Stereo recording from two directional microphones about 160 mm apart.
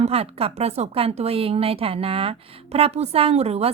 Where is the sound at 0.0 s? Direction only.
40° right (ahead or behind).